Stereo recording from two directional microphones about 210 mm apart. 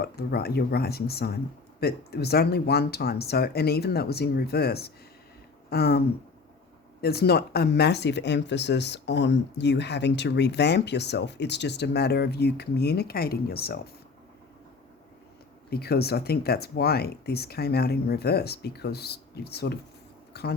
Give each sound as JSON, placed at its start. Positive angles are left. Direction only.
{"t": 0.0, "sound": "speech", "side_deg": 50}
{"t": 7.0, "sound": "speech", "side_deg": 50}
{"t": 15.7, "sound": "speech", "side_deg": 50}